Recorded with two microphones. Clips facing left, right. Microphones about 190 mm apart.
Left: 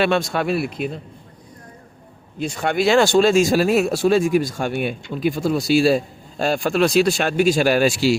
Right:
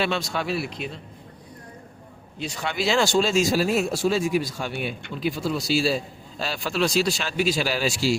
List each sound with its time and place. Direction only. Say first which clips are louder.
0.0 s speech: left 7 dB; 55° left (ahead or behind)
2.4 s speech: left 7 dB; 50° left (ahead or behind)